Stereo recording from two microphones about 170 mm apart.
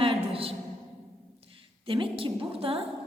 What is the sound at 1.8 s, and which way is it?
Speech, 30° right (ahead or behind).